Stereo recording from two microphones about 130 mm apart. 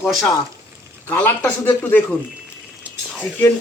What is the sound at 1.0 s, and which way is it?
Speech, 10° left (ahead or behind).